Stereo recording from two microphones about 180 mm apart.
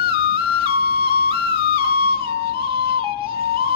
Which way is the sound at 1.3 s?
30° right (ahead or behind).